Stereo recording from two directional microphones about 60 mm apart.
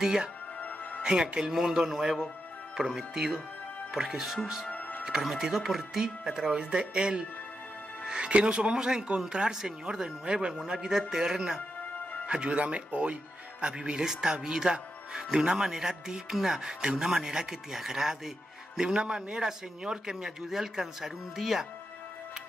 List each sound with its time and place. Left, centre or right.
0.0 s speech: centre
4.6 s music: left
5.0 s speech: centre